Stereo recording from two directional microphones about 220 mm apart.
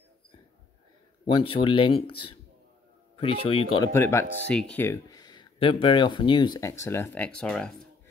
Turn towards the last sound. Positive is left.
turn(degrees=5)  # may be behind; listen again after turning